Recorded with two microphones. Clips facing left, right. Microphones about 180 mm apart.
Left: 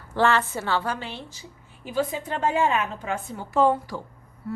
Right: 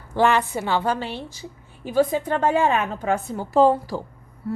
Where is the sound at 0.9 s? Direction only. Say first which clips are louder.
Right 6 dB; 35° right (ahead or behind).